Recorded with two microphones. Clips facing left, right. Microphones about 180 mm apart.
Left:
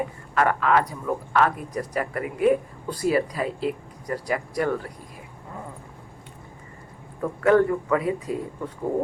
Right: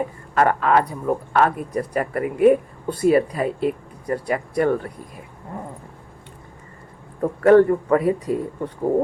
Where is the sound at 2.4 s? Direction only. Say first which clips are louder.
Right 5 dB; 55° right (ahead or behind).